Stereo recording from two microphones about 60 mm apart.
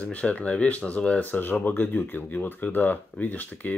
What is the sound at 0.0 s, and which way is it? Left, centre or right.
Speech, left.